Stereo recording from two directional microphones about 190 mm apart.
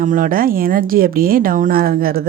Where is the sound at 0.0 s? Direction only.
45° right (ahead or behind).